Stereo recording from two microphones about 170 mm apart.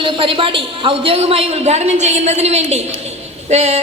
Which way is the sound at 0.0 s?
30° right (ahead or behind).